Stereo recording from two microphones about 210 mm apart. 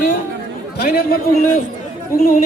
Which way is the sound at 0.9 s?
45° left (ahead or behind).